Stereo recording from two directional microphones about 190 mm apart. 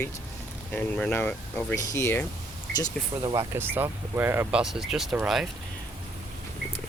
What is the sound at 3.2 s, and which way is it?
Speech, 15° right (ahead or behind).